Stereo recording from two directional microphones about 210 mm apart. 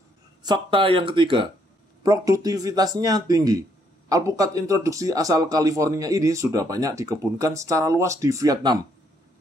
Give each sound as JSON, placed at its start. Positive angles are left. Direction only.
{"t": 0.4, "sound": "speech", "side_deg": -20}